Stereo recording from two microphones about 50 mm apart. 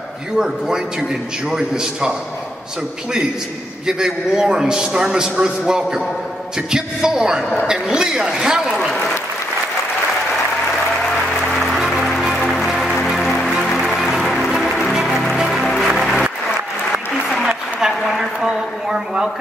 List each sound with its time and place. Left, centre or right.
1.6 s a man's voice: centre
3.8 s a man's voice: centre
8.7 s speech: centre
11.0 s music: centre
13.5 s music: centre
17.5 s a sound: centre